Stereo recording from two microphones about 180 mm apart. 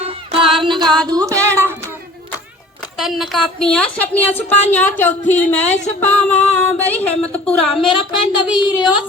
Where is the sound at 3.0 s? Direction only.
Centre (ahead or behind).